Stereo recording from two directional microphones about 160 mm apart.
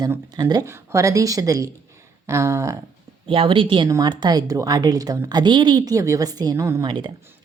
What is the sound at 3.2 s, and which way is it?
A woman's voice, 35° right (ahead or behind).